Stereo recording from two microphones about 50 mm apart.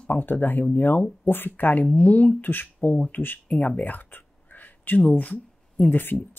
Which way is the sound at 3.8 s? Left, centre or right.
Left.